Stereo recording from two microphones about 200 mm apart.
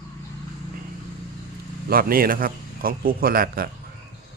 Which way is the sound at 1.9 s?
45° right (ahead or behind).